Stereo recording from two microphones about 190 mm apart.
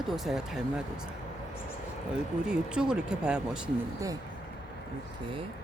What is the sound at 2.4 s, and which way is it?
Speech, 5° right (ahead or behind).